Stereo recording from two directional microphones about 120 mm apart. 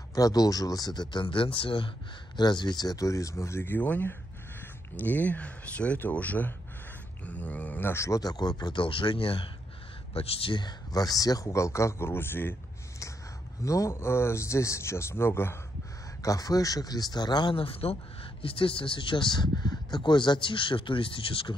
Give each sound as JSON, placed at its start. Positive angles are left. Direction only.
{"t": 0.1, "sound": "speech", "side_deg": 30}
{"t": 13.7, "sound": "speech", "side_deg": 25}